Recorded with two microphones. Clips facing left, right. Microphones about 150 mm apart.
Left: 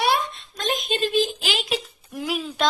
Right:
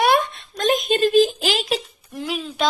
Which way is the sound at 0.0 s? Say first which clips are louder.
Right 5 dB; 50° right (ahead or behind).